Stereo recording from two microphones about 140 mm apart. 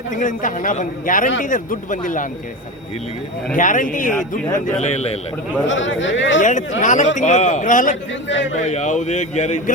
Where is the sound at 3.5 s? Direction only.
65° left (ahead or behind).